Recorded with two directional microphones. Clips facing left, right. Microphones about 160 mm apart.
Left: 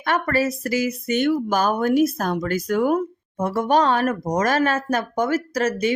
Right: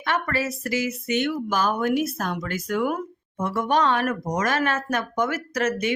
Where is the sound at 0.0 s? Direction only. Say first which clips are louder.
Left 4 dB; 45° left (ahead or behind).